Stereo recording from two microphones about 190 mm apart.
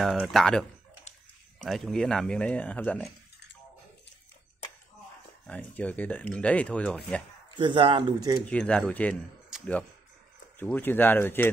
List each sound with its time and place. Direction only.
0.0 s speech: centre (ahead or behind)
5.5 s speech: 10° left (ahead or behind)
7.5 s speech: 25° right (ahead or behind)
8.5 s speech: 5° left (ahead or behind)
10.6 s speech: 10° left (ahead or behind)